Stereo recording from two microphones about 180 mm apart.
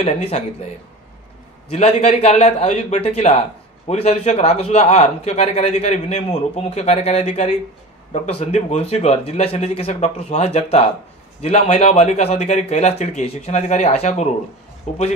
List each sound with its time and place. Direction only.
0.0 s a man's voice: 40° left (ahead or behind)
1.7 s a man's voice: 40° left (ahead or behind)